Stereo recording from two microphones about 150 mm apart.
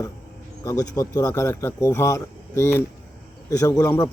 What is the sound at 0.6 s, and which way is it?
Speech, 20° left (ahead or behind).